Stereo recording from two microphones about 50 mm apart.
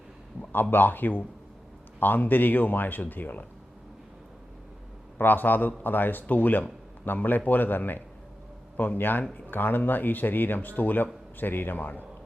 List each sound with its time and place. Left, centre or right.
0.5 s speech: left
5.1 s speech: left